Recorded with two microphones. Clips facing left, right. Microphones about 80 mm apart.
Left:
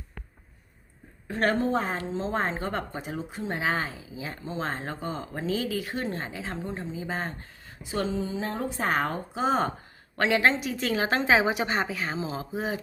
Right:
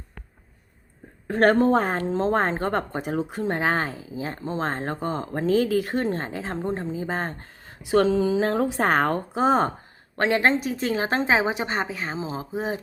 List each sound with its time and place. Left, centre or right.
1.3 s speech: right
7.9 s a woman's voice: right